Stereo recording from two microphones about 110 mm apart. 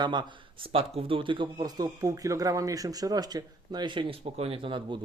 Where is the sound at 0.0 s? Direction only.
45° right (ahead or behind).